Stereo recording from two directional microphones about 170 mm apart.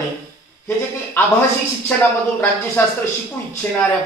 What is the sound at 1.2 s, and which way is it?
Speech, 10° left (ahead or behind).